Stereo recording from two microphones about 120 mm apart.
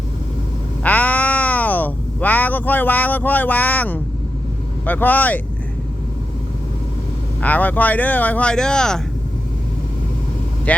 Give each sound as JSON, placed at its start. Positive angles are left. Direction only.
{"t": 0.8, "sound": "meow", "side_deg": 10}
{"t": 4.9, "sound": "speech", "side_deg": 15}
{"t": 7.4, "sound": "speech", "side_deg": 15}
{"t": 10.7, "sound": "speech", "side_deg": 10}